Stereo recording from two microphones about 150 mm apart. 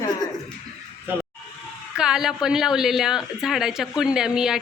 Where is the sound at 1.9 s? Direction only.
5° right (ahead or behind).